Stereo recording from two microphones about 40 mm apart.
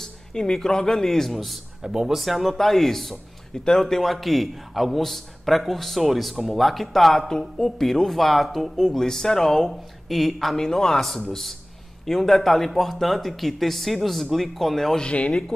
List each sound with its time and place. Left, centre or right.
0.0 s a man's voice: centre
1.8 s speech: centre
2.1 s a man's voice: centre
15.0 s speech: left